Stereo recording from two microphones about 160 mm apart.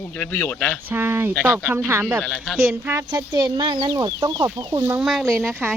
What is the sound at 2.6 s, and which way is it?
Speech, 10° right (ahead or behind).